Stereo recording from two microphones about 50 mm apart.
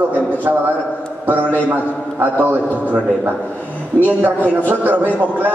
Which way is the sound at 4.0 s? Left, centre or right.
Right.